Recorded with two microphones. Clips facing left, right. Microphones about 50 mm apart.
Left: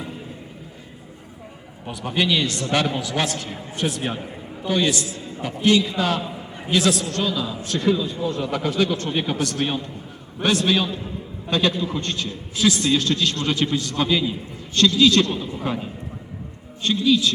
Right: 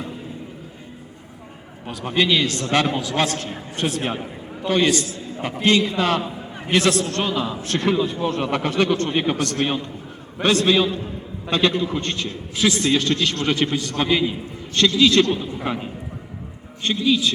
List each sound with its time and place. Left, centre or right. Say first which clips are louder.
2.0 s a man's voice: right 2 dB; right
4.6 s a man's voice: right 3 dB; right
11.5 s a man's voice: right 2 dB; right
13.7 s a man's voice: right 1 dB; right